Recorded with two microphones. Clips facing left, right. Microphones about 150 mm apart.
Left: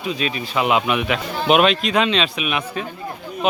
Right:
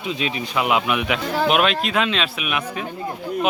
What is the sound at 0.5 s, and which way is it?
Speech, centre (ahead or behind).